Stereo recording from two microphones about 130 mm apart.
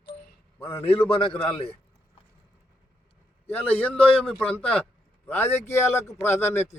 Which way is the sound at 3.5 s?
10° left (ahead or behind).